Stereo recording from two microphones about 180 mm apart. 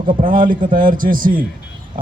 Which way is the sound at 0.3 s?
50° right (ahead or behind).